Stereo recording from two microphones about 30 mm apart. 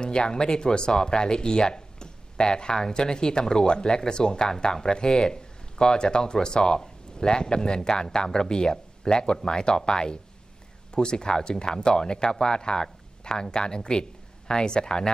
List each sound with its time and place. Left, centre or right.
0.0 s speech: left